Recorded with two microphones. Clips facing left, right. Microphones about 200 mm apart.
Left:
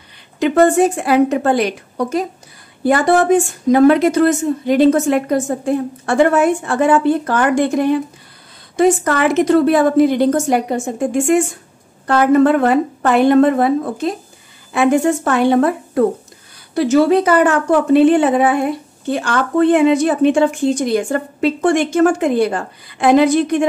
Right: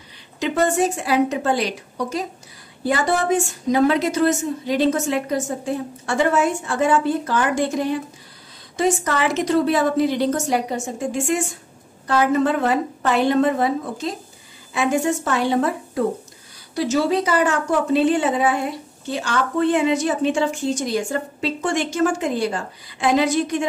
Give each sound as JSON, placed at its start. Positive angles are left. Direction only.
{"t": 0.4, "sound": "a woman's voice", "side_deg": 55}